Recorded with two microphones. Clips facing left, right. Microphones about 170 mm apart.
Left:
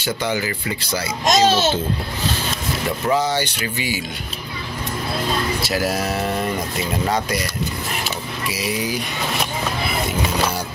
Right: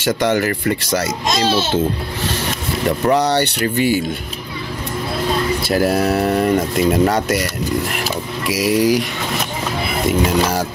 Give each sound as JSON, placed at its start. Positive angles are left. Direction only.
{"t": 0.0, "sound": "speech", "side_deg": -70}
{"t": 0.8, "sound": "speech", "side_deg": -70}
{"t": 3.1, "sound": "speech", "side_deg": -65}
{"t": 3.6, "sound": "speech", "side_deg": -55}
{"t": 5.6, "sound": "speech", "side_deg": -55}
{"t": 8.7, "sound": "speech", "side_deg": -90}